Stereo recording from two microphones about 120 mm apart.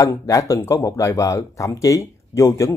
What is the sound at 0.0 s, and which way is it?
Speech, 25° left (ahead or behind).